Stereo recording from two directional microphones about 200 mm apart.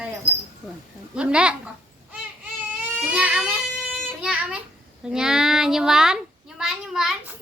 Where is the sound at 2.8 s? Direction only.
5° right (ahead or behind).